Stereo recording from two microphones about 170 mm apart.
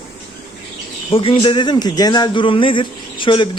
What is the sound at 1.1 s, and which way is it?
Speech, 30° left (ahead or behind).